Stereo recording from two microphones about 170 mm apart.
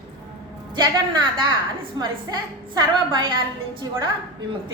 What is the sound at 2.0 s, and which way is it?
A woman's voice, 25° right (ahead or behind).